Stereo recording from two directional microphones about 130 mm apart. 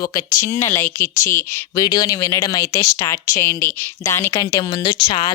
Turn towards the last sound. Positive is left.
turn(degrees=40)  # may be behind; listen again after turning